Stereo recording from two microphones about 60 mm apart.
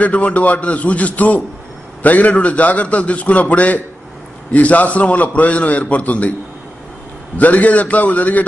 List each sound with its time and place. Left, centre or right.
0.0 s a man's voice: left
7.3 s a man's voice: left